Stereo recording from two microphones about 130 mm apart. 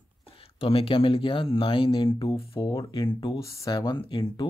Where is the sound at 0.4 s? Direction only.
45° left (ahead or behind).